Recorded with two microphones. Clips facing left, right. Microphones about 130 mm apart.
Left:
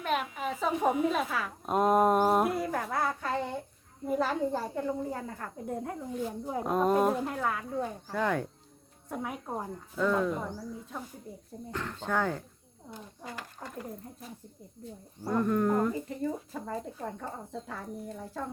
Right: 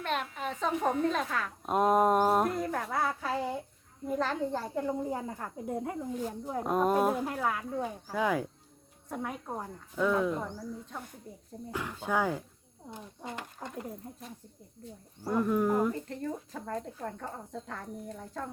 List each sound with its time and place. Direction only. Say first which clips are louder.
0.0 s a sound: left 2 dB; 5° left (ahead or behind)
0.3 s a woman's voice: left 1 dB; 5° left (ahead or behind)
4.1 s a woman's voice: left 2 dB; 5° left (ahead or behind)
5.0 s speech: right 1 dB; 15° right (ahead or behind)
6.4 s a woman's voice: even; 5° left (ahead or behind)
9.9 s a woman's voice: even; 5° right (ahead or behind)
11.7 s speech: even; 10° right (ahead or behind)
12.9 s speech: right 1 dB; 20° right (ahead or behind)
14.2 s a woman's voice: left 1 dB; centre (ahead or behind)
15.9 s a woman's voice: left 2 dB; 5° left (ahead or behind)